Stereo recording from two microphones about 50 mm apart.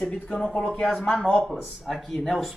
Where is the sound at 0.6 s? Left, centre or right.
Centre.